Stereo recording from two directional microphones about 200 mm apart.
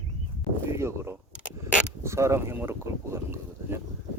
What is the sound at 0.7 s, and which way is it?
Speech, 15° right (ahead or behind).